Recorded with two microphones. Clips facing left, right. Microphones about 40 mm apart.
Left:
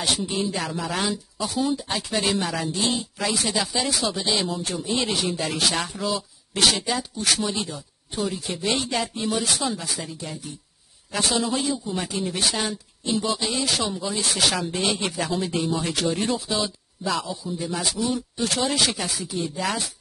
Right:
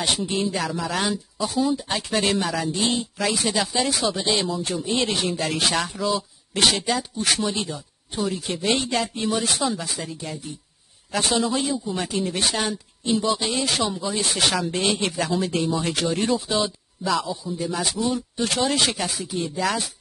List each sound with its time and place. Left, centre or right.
0.2 s speech: centre
4.1 s speech: right
4.4 s speech: centre